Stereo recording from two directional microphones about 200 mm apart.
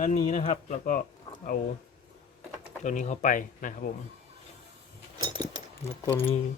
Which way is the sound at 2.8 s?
35° left (ahead or behind).